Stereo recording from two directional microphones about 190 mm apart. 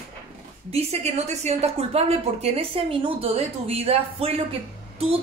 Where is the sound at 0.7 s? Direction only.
35° right (ahead or behind).